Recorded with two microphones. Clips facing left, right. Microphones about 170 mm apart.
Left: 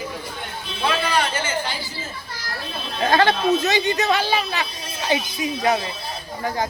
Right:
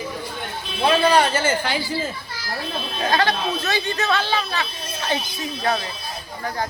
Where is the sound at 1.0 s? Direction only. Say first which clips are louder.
Right 6 dB; 40° right (ahead or behind).